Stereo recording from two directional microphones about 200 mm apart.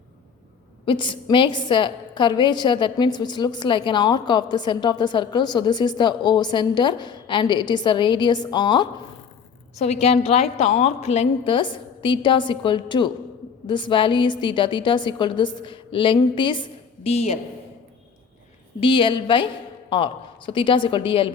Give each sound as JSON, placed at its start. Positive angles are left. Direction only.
{"t": 0.9, "sound": "a woman's voice", "side_deg": 25}
{"t": 9.7, "sound": "a woman's voice", "side_deg": 35}
{"t": 18.8, "sound": "a woman's voice", "side_deg": 25}